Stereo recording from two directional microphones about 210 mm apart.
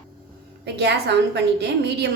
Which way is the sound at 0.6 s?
55° right (ahead or behind).